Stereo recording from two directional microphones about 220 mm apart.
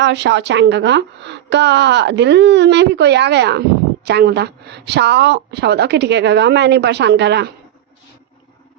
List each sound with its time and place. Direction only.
0.0 s a woman's voice: 50° right (ahead or behind)